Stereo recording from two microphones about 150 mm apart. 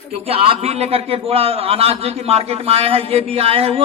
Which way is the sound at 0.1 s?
40° right (ahead or behind).